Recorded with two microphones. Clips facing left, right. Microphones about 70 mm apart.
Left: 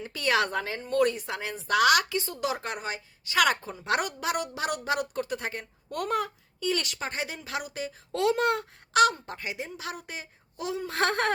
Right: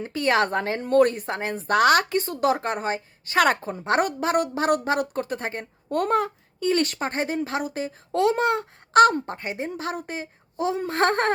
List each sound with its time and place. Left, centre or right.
0.0 s speech: right
8.9 s speech: right